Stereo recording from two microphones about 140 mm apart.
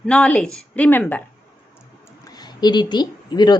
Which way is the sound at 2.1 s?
30° left (ahead or behind).